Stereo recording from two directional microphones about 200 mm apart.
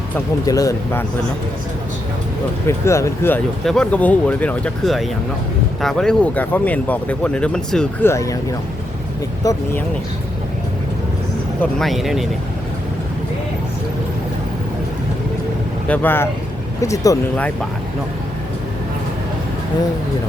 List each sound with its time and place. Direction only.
0.4 s speech: 15° left (ahead or behind)
2.6 s speech: 15° left (ahead or behind)
8.1 s speech: 15° left (ahead or behind)
9.4 s speech: 15° left (ahead or behind)
11.6 s speech: centre (ahead or behind)
15.9 s speech: 10° left (ahead or behind)